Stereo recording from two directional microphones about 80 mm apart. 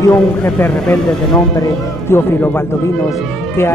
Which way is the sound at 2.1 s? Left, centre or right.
Left.